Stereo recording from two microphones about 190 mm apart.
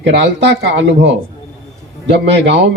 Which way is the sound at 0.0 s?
70° right (ahead or behind).